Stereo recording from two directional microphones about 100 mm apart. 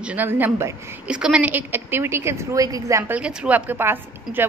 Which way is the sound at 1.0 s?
10° right (ahead or behind).